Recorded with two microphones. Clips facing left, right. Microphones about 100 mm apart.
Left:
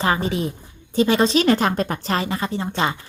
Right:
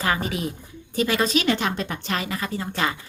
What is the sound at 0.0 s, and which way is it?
A woman's voice, 30° left (ahead or behind).